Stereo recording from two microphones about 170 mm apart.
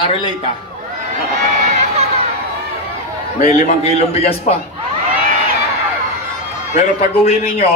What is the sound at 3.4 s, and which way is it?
A man's voice, 40° left (ahead or behind).